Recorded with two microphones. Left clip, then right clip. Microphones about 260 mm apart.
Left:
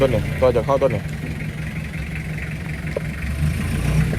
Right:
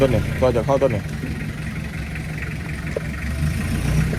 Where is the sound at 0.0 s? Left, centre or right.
Centre.